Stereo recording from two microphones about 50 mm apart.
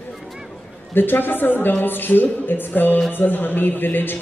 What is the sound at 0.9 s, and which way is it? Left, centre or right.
A woman's voice, left.